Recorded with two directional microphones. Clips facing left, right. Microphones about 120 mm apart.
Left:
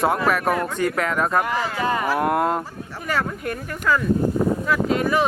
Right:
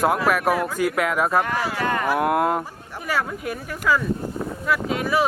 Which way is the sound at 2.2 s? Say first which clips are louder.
Even; centre (ahead or behind).